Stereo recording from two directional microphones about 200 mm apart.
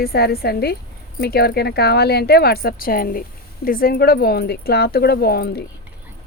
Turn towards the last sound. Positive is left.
turn(degrees=50)  # may be behind; listen again after turning